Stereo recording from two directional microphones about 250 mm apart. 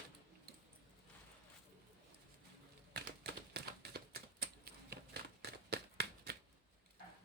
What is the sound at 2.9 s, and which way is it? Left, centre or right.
Typewriter, right.